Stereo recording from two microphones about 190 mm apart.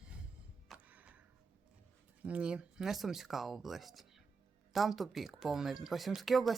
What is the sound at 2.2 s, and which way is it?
Speech, 5° right (ahead or behind).